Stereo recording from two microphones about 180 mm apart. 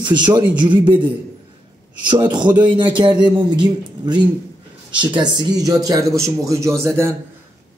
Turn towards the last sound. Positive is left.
turn(degrees=-15)  # may be behind; listen again after turning